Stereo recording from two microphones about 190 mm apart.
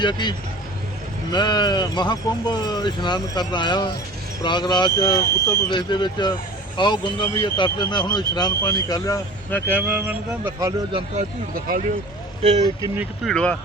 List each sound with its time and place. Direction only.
0.0 s speech: 25° left (ahead or behind)
9.8 s speech: 10° right (ahead or behind)
11.5 s speech: 45° right (ahead or behind)
12.4 s speech: 35° right (ahead or behind)
13.0 s speech: centre (ahead or behind)